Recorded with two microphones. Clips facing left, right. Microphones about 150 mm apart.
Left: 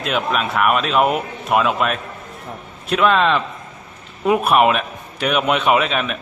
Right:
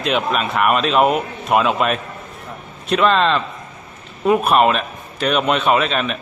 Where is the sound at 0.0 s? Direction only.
Centre (ahead or behind).